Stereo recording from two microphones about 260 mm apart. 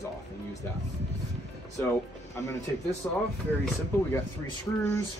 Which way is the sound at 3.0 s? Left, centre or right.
Centre.